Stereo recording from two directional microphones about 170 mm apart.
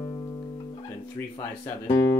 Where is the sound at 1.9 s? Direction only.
20° left (ahead or behind).